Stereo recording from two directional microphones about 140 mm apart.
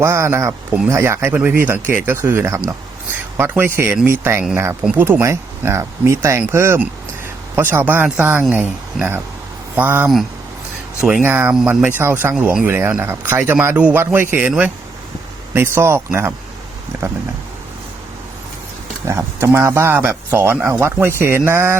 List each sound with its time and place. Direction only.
0.0 s speech: 20° right (ahead or behind)
19.0 s speech: 20° right (ahead or behind)